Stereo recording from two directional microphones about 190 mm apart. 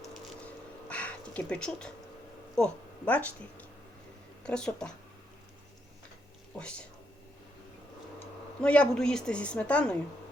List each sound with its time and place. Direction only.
0.0 s a sound: 5° left (ahead or behind)
2.6 s a woman's voice: 5° left (ahead or behind)
8.6 s a woman's voice: 5° left (ahead or behind)